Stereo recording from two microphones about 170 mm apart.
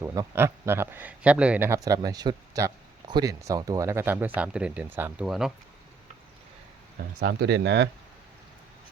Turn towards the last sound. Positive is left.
turn(degrees=-90)